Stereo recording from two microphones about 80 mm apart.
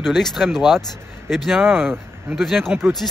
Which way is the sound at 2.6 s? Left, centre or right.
Right.